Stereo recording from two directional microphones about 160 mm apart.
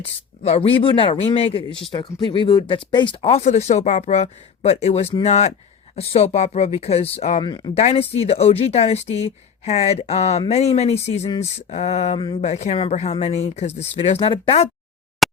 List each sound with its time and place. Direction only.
0.0 s speech: 40° left (ahead or behind)
1.9 s speech: 25° left (ahead or behind); by 7.4 s 45° left (ahead or behind)
7.4 s speech: 30° left (ahead or behind)
7.8 s speech: 40° left (ahead or behind)
15.2 s a sound: centre (ahead or behind)